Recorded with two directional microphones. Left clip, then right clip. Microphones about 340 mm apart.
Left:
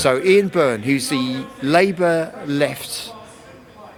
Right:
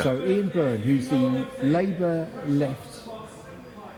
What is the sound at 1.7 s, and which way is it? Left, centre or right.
Speech, centre.